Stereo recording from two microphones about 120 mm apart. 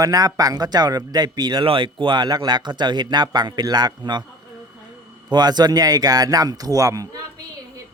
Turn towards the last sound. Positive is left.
turn(degrees=-30)  # may be behind; listen again after turning